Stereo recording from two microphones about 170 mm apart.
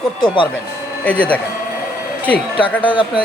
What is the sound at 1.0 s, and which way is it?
Speech, 5° left (ahead or behind).